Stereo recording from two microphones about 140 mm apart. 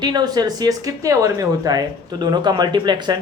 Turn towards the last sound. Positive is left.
turn(degrees=-30)  # may be behind; listen again after turning